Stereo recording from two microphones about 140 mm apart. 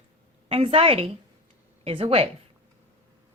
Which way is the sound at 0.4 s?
40° right (ahead or behind).